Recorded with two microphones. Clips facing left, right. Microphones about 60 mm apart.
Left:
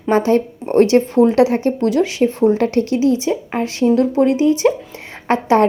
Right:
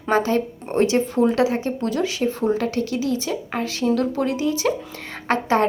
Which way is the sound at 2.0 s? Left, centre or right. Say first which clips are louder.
Left 7 dB; left.